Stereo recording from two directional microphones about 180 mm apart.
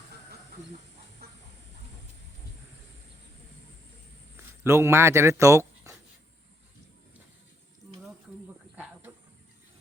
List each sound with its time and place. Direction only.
1.2 s chicken: 60° right (ahead or behind)
4.6 s speech: 15° right (ahead or behind)
8.7 s a sound: 10° right (ahead or behind)